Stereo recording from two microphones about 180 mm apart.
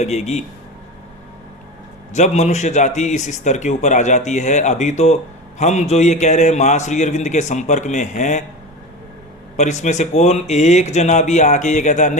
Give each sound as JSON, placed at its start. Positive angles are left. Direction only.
{"t": 0.0, "sound": "a man's voice", "side_deg": 40}
{"t": 2.1, "sound": "a man's voice", "side_deg": 40}
{"t": 9.6, "sound": "a man's voice", "side_deg": 40}